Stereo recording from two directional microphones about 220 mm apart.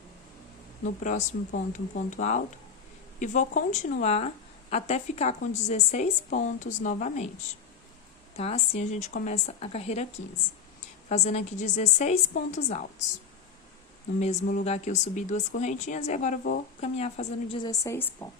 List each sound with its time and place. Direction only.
1.5 s speech: 35° left (ahead or behind)
14.2 s speech: 35° left (ahead or behind); by 18.3 s 10° left (ahead or behind)